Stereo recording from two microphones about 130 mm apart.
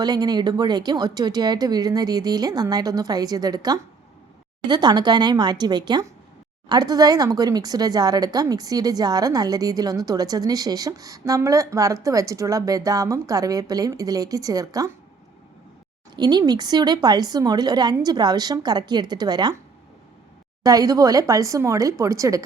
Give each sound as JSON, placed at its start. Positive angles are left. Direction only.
{"t": 0.0, "sound": "a woman's voice", "side_deg": -30}
{"t": 16.1, "sound": "a woman's voice", "side_deg": -30}
{"t": 20.7, "sound": "speech", "side_deg": -30}